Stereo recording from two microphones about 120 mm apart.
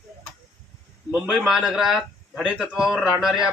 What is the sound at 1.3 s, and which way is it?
Speech, 5° right (ahead or behind).